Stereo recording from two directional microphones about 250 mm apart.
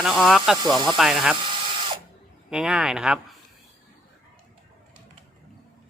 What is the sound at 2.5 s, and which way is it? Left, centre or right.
Speech, centre.